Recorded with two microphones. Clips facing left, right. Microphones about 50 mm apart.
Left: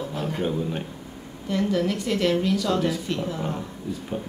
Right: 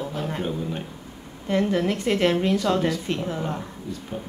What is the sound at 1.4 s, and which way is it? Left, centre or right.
A woman's voice, right.